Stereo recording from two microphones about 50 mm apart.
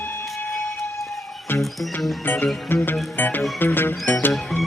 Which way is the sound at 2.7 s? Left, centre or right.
Left.